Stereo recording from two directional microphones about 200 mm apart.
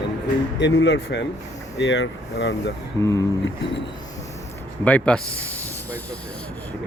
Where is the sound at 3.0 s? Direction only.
15° left (ahead or behind).